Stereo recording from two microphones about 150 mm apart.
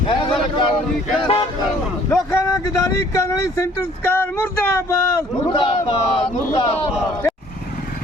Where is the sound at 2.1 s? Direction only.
20° left (ahead or behind).